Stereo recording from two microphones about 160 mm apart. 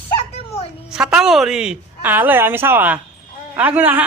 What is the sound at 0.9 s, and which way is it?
A woman's voice, 5° right (ahead or behind).